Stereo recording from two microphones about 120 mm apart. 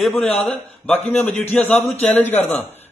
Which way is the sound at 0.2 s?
10° left (ahead or behind).